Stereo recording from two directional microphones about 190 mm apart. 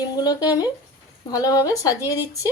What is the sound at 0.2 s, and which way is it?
Speech, 20° left (ahead or behind).